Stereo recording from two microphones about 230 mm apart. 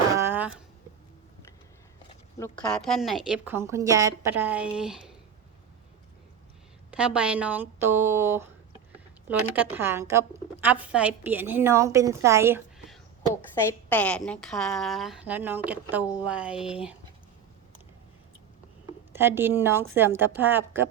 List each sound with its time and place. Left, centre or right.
0.2 s a sound: centre
2.4 s a woman's voice: centre
6.9 s a woman's voice: centre
13.9 s a woman's voice: centre
19.1 s a woman's voice: centre